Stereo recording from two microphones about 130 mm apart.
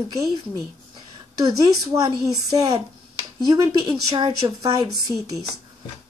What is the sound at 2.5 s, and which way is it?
Speech, 25° right (ahead or behind).